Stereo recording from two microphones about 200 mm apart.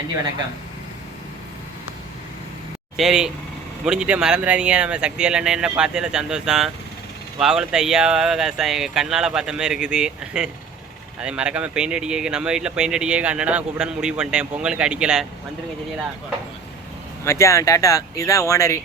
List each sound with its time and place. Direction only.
3.0 s speech: centre (ahead or behind)
17.2 s speech: 15° left (ahead or behind)